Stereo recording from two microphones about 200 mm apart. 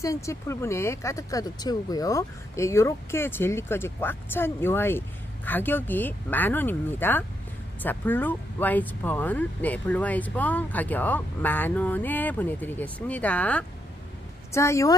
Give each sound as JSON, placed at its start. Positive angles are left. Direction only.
{"t": 0.0, "sound": "speech", "side_deg": 15}